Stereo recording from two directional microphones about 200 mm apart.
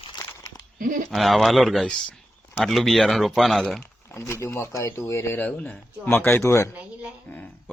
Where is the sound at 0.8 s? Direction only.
40° right (ahead or behind).